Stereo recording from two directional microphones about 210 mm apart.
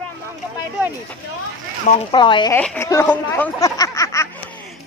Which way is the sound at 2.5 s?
10° left (ahead or behind).